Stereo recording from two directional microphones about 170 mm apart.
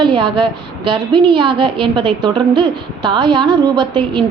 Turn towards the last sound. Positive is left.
turn(degrees=-25)  # may be behind; listen again after turning